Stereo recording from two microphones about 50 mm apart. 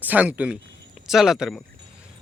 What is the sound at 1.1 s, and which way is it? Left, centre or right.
Speech, centre.